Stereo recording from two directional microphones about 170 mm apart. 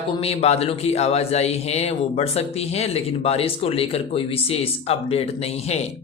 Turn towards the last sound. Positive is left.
turn(degrees=40)  # may be behind; listen again after turning